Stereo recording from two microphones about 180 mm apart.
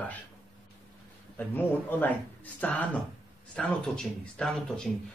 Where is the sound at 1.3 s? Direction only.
10° left (ahead or behind).